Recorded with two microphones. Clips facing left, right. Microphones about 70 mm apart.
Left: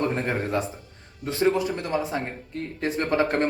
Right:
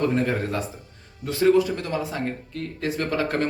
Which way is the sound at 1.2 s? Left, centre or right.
Left.